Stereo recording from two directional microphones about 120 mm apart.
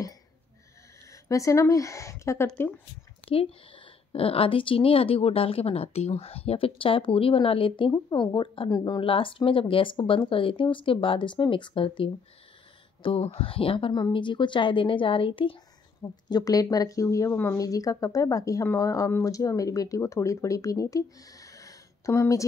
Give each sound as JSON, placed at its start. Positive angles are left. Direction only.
{"t": 1.1, "sound": "speech", "side_deg": 25}
{"t": 3.3, "sound": "a woman's voice", "side_deg": 50}
{"t": 9.0, "sound": "a woman's voice", "side_deg": 50}
{"t": 16.0, "sound": "a woman's voice", "side_deg": 35}